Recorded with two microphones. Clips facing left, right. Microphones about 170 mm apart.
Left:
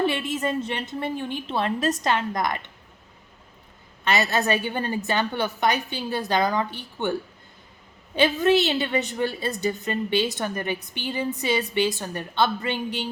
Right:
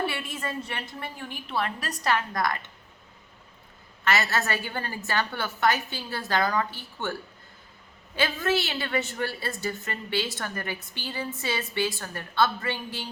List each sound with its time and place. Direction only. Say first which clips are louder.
0.0 s a woman's voice: left 7 dB; 20° left (ahead or behind)
4.0 s a woman's voice: left 3 dB; 20° left (ahead or behind)